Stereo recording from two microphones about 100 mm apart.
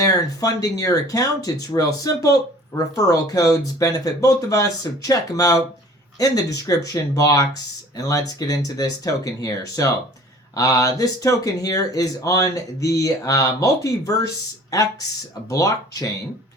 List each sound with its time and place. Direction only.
0.0 s speech: 35° left (ahead or behind)
15.4 s speech: 35° left (ahead or behind)